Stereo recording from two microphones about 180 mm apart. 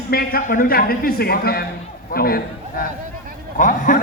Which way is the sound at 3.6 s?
45° left (ahead or behind).